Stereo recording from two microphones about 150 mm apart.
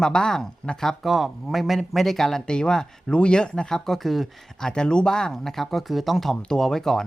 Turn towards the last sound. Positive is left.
turn(degrees=0)  # may be behind; listen again after turning